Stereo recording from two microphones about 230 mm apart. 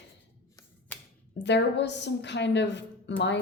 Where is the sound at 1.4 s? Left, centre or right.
Left.